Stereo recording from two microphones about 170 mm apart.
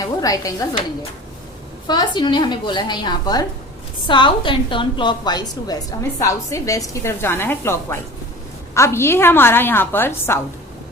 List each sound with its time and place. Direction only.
0.0 s a woman's voice: 20° left (ahead or behind)
1.9 s a woman's voice: 25° left (ahead or behind)